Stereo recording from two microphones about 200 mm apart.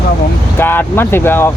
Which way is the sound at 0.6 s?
10° left (ahead or behind).